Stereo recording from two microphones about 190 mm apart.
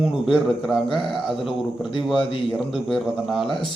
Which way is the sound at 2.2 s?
25° left (ahead or behind).